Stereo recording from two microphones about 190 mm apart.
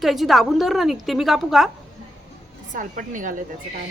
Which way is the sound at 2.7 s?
45° right (ahead or behind).